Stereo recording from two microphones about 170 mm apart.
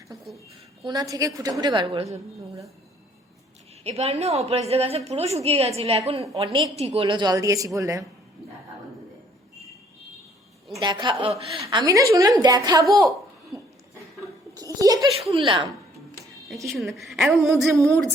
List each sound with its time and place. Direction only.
0.9 s a woman's voice: 20° right (ahead or behind)
3.8 s a woman's voice: 35° right (ahead or behind); by 8.0 s 20° right (ahead or behind)
10.8 s a woman's voice: 25° right (ahead or behind)
11.6 s a woman's voice: 25° right (ahead or behind)
14.5 s a child's voice: 20° right (ahead or behind)
16.6 s a woman's voice: centre (ahead or behind)